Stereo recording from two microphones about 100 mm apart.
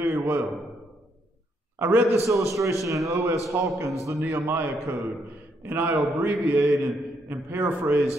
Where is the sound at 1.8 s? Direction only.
20° right (ahead or behind).